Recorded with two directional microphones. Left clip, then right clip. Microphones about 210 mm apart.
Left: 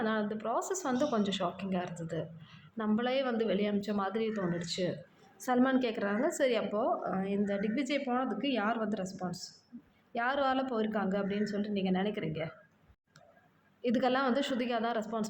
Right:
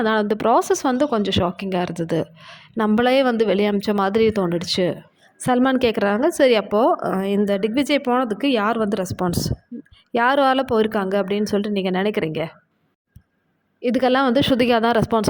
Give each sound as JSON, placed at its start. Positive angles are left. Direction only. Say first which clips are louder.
{"t": 0.0, "sound": "speech", "louder": "right 15 dB", "side_deg": -50}
{"t": 13.8, "sound": "speech", "louder": "right 12 dB", "side_deg": -40}